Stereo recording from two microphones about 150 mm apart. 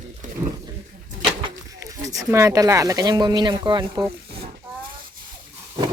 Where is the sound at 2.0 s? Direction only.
20° right (ahead or behind).